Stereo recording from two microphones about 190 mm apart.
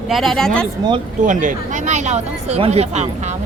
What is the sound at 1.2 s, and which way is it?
Speech, 40° right (ahead or behind).